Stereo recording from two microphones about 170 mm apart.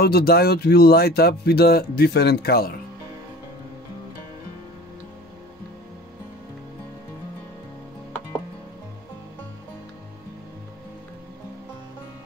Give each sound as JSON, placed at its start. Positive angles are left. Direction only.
{"t": 0.0, "sound": "speech", "side_deg": 65}